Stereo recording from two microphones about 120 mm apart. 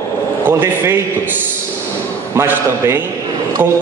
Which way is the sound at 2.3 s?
20° right (ahead or behind).